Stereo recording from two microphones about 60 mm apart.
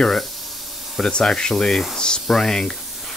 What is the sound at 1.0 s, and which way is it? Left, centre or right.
Speech, centre.